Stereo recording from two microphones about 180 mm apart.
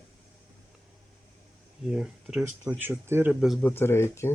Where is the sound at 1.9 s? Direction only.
5° right (ahead or behind).